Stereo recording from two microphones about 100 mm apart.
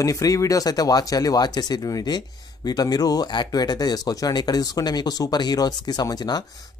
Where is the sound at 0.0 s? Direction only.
35° left (ahead or behind).